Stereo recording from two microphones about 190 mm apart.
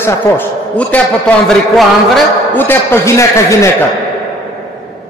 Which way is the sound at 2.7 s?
15° left (ahead or behind).